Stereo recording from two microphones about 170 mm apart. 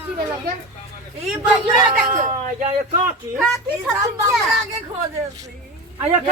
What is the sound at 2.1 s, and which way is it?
Speech, 45° right (ahead or behind).